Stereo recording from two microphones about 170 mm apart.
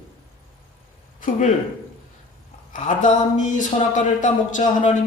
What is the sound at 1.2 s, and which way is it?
Speech, 50° left (ahead or behind).